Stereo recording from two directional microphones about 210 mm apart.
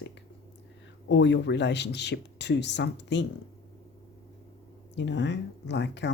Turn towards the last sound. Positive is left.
turn(degrees=55)  # may be behind; listen again after turning